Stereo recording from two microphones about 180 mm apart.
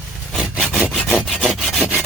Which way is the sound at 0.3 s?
5° right (ahead or behind).